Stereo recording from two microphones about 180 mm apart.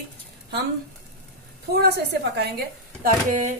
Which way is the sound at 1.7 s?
65° right (ahead or behind).